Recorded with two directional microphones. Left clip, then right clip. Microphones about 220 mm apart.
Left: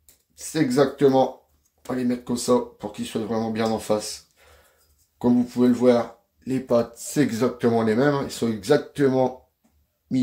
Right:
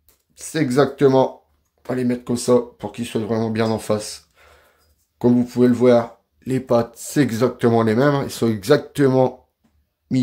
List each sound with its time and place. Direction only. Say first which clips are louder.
0.3 s speech: right 2 dB; 45° right (ahead or behind)